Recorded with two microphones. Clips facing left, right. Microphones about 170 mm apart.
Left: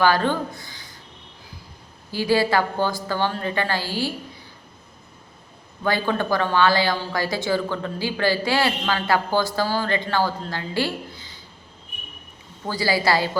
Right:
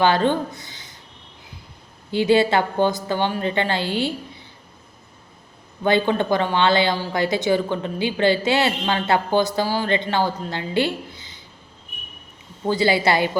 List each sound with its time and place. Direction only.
0.0 s speech: 20° right (ahead or behind)
2.0 s a woman's voice: 20° right (ahead or behind)
5.8 s a woman's voice: 20° right (ahead or behind)
12.6 s a woman's voice: 25° right (ahead or behind)